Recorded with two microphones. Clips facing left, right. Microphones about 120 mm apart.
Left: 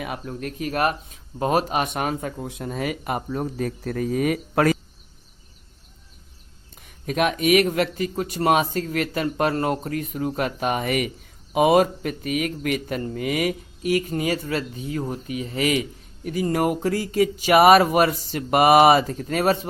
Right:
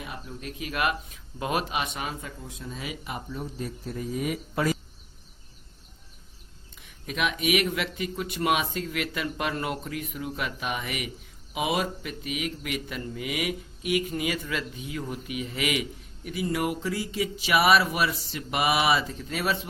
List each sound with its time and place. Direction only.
0.0 s speech: 60° left (ahead or behind)
6.7 s a man's voice: 45° left (ahead or behind)